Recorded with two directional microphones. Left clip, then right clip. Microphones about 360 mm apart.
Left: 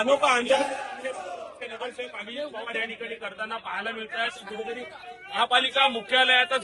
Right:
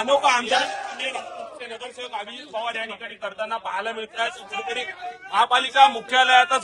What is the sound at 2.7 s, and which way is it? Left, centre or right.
A man's voice, centre.